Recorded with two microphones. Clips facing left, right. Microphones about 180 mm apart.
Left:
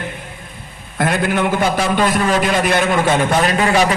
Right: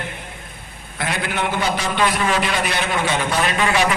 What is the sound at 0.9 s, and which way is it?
A man's voice, 50° left (ahead or behind).